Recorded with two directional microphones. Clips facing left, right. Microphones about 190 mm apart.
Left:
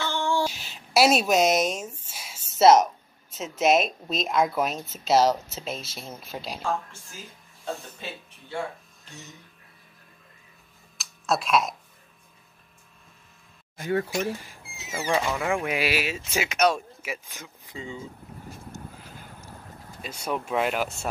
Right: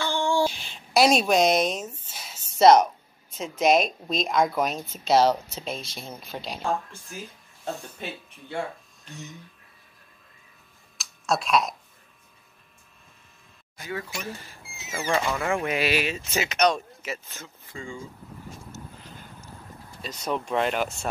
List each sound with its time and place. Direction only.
0.1 s a sound: 15° right (ahead or behind)
0.5 s speech: 5° left (ahead or behind)
11.0 s typing: centre (ahead or behind)
13.7 s speech: 50° left (ahead or behind)
14.4 s speech: 10° left (ahead or behind)
20.0 s speech: 10° left (ahead or behind)